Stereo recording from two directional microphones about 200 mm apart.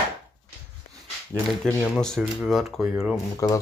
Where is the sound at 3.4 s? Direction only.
15° left (ahead or behind).